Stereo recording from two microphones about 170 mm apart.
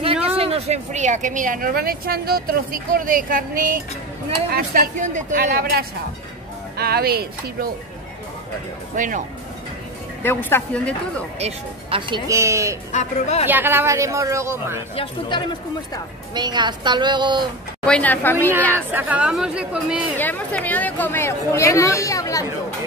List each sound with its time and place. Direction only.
0.0 s a sound: 35° right (ahead or behind)
0.4 s speech: 35° right (ahead or behind)
5.5 s speech: 60° right (ahead or behind)
8.9 s speech: 50° right (ahead or behind)
10.2 s a woman's voice: 10° left (ahead or behind)
11.3 s speech: 35° right (ahead or behind)
12.3 s speech: 15° right (ahead or behind)
12.9 s a woman's voice: 40° left (ahead or behind)
13.5 s speech: 10° right (ahead or behind)
15.0 s speech: 30° left (ahead or behind)
16.3 s a woman's voice: 25° right (ahead or behind)
17.8 s a woman's voice: 5° left (ahead or behind)
18.9 s speech: 10° right (ahead or behind)
20.2 s a woman's voice: 10° left (ahead or behind)